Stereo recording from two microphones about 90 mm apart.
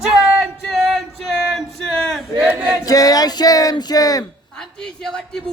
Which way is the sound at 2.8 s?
40° left (ahead or behind).